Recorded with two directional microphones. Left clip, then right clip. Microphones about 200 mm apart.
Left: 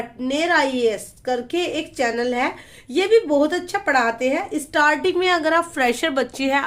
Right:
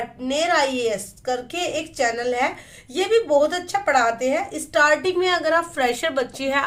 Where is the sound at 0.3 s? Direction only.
30° left (ahead or behind).